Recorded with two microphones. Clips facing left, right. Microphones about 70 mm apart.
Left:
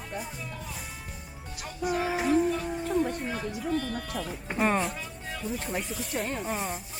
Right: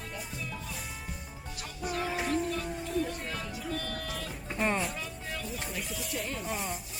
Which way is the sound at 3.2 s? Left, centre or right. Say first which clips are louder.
Left 5 dB; centre.